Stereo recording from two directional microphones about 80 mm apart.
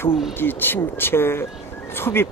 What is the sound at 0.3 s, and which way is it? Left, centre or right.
Speech, left.